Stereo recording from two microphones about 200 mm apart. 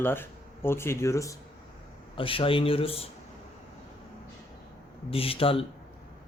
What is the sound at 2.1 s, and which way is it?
Speech, 25° left (ahead or behind).